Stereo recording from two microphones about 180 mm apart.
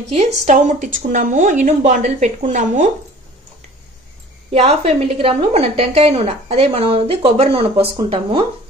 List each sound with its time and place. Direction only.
0.1 s a woman's voice: 40° right (ahead or behind)
4.5 s a woman's voice: 35° right (ahead or behind)